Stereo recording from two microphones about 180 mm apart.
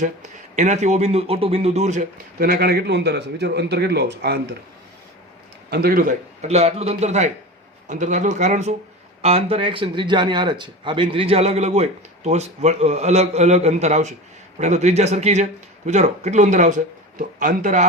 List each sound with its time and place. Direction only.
0.5 s a man's voice: 40° right (ahead or behind); by 4.4 s 65° right (ahead or behind)
5.7 s a man's voice: 55° right (ahead or behind)